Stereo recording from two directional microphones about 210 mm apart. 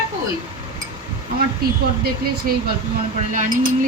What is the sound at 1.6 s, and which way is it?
Speech, 45° right (ahead or behind).